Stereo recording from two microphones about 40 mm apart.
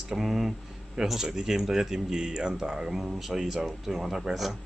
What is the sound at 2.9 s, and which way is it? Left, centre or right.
Speech, centre.